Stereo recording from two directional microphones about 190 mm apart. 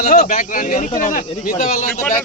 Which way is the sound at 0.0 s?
40° left (ahead or behind).